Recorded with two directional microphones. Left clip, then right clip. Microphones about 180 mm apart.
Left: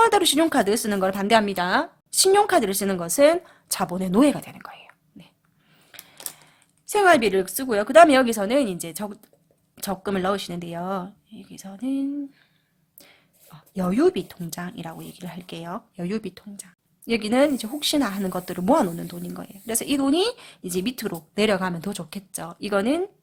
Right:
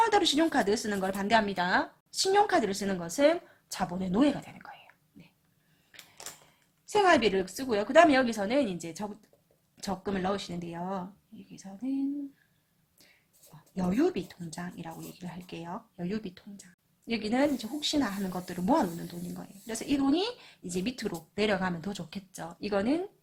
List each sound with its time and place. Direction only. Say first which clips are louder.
0.0 s speech: left 7 dB; 40° left (ahead or behind)
6.8 s speech: left 6 dB; 45° left (ahead or behind)
13.7 s speech: left 8 dB; 45° left (ahead or behind)